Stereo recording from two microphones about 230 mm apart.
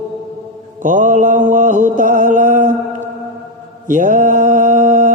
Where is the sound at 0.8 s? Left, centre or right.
Right.